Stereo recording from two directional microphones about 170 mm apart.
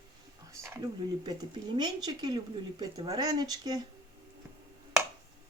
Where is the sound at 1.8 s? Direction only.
25° right (ahead or behind).